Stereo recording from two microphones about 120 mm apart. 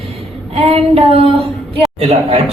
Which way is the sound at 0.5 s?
55° right (ahead or behind).